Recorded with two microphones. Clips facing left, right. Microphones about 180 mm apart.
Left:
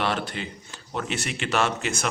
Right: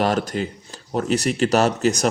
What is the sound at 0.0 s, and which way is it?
A man's voice, 40° right (ahead or behind).